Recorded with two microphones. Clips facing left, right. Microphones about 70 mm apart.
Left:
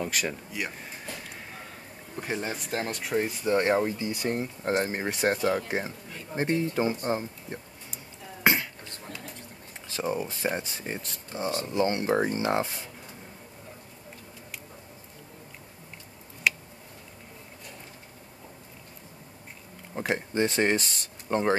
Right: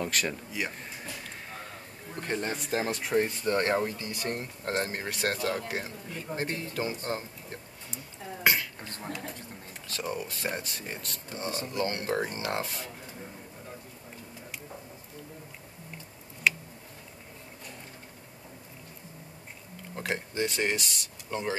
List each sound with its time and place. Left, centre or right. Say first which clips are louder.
0.0 s speech: even; centre
2.1 s speech: even; centre
8.5 s a sound: left 2 dB; left
9.8 s speech: left 5 dB; centre
20.3 s speech: left 5 dB; left